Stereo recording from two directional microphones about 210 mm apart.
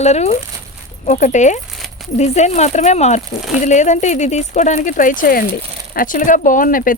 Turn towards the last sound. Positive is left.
turn(degrees=40)  # may be behind; listen again after turning